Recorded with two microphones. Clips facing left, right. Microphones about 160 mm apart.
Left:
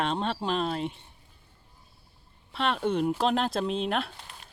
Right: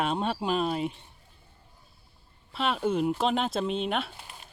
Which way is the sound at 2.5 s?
5° right (ahead or behind).